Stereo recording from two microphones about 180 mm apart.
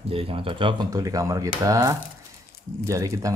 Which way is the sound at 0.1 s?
30° right (ahead or behind).